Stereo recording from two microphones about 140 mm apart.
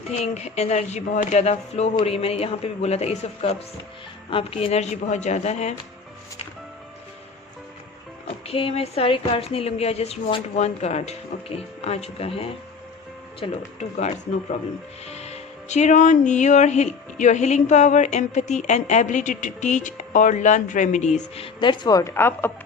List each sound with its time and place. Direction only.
0.1 s a woman's voice: 55° left (ahead or behind)
8.4 s a woman's voice: 45° left (ahead or behind)
15.0 s speech: 50° left (ahead or behind); by 22.5 s 15° left (ahead or behind)